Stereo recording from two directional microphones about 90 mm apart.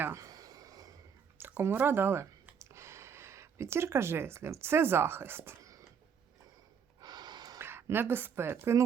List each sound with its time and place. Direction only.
0.2 s a sound: 45° right (ahead or behind)
1.4 s speech: 25° right (ahead or behind)
7.0 s snort: 50° right (ahead or behind)
7.6 s a woman's voice: 25° right (ahead or behind)